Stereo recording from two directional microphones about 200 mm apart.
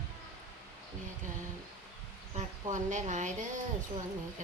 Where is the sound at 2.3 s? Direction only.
35° right (ahead or behind).